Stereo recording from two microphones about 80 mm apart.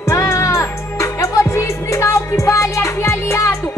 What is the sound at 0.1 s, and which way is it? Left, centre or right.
Music, left.